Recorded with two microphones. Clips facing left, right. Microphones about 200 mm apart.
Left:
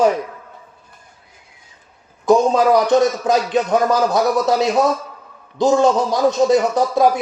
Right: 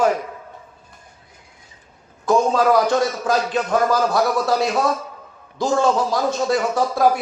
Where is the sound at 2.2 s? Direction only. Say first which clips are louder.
Left 3 dB; 20° left (ahead or behind).